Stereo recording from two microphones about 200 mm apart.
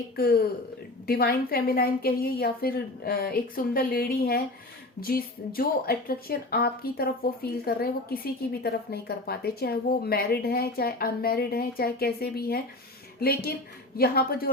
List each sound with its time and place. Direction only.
0.2 s a woman's voice: 50° left (ahead or behind)